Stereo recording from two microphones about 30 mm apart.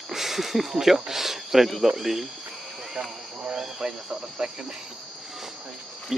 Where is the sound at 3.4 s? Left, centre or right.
Right.